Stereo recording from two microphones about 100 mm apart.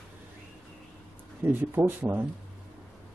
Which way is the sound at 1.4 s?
20° right (ahead or behind).